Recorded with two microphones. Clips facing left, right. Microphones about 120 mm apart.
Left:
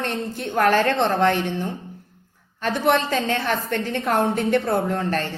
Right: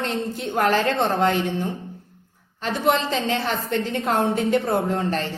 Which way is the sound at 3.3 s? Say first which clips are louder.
Even; 25° right (ahead or behind).